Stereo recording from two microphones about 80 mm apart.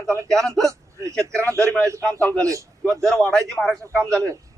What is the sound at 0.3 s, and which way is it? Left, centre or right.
Speech, centre.